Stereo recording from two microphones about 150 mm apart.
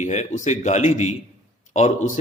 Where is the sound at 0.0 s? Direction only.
50° left (ahead or behind).